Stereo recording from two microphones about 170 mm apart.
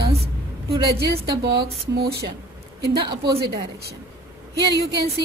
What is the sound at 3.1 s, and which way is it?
Speech, 25° right (ahead or behind).